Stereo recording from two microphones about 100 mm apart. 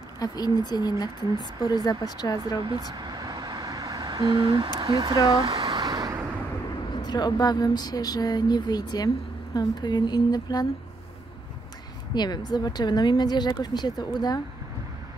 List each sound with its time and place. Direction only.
0.2 s speech: 40° left (ahead or behind)
2.6 s a sound: 50° right (ahead or behind)
5.8 s vehicle: 40° right (ahead or behind)
6.9 s speech: 45° left (ahead or behind)
12.1 s speech: 45° left (ahead or behind)